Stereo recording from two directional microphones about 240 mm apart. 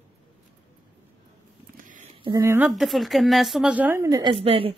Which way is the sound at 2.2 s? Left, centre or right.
Centre.